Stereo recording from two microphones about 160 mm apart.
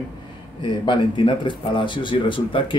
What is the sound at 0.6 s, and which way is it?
Speech, 30° left (ahead or behind).